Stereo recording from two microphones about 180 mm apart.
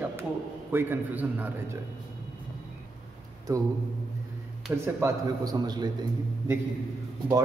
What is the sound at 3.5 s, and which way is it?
Speech, 20° right (ahead or behind).